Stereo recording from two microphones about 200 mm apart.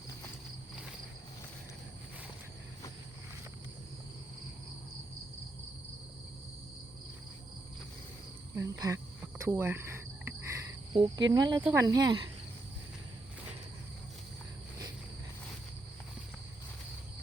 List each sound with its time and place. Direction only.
8.5 s cricket: 15° right (ahead or behind)
11.3 s speech: 20° right (ahead or behind)